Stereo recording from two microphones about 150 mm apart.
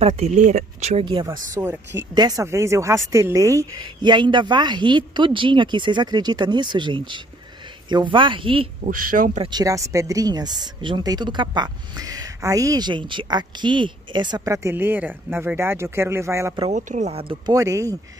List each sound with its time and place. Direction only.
0.0 s speech: 50° right (ahead or behind)
1.0 s speech: 30° right (ahead or behind)
8.8 s speech: 65° right (ahead or behind)
9.4 s speech: 25° right (ahead or behind)
16.7 s speech: 50° right (ahead or behind)
17.5 s speech: 20° right (ahead or behind)